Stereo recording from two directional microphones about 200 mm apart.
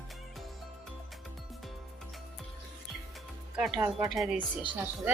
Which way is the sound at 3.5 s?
Centre (ahead or behind).